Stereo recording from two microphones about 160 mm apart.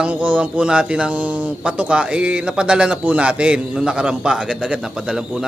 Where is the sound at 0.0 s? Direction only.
10° right (ahead or behind).